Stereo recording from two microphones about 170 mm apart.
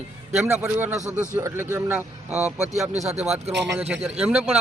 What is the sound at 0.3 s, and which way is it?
Speech, 15° right (ahead or behind).